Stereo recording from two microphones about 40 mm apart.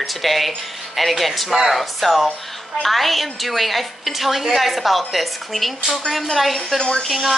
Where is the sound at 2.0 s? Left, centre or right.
Centre.